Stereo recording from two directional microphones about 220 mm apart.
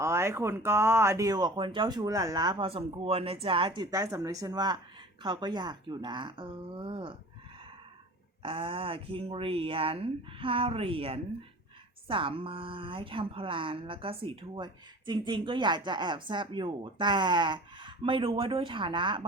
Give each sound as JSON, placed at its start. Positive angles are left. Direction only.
{"t": 0.0, "sound": "a woman's voice", "side_deg": -15}
{"t": 8.4, "sound": "a woman's voice", "side_deg": -25}